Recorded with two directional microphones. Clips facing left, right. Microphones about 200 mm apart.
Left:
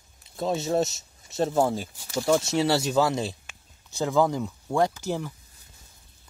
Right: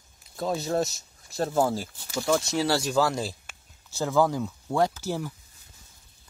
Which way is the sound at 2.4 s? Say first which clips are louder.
Left 2 dB; 25° left (ahead or behind).